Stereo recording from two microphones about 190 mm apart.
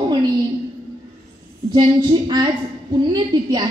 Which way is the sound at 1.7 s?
20° right (ahead or behind).